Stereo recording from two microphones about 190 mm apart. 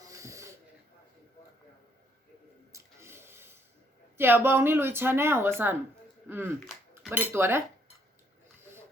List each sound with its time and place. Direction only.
0.0 s snort: 15° right (ahead or behind)
2.7 s a sound: 15° right (ahead or behind)
4.2 s a woman's voice: 10° right (ahead or behind)